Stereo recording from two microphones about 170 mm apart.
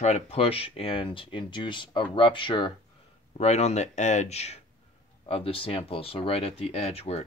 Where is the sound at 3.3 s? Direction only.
40° left (ahead or behind).